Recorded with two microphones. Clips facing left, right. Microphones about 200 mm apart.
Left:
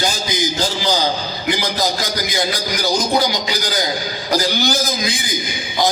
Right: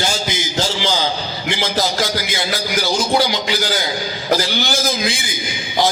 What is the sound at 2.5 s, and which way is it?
A man's voice, 45° left (ahead or behind).